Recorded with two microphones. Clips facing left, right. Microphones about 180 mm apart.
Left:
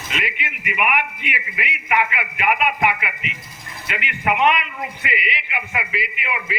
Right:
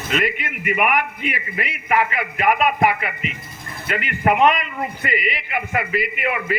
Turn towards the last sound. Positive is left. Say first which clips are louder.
# right 5 dB
turn(degrees=-50)  # may be behind; listen again after turning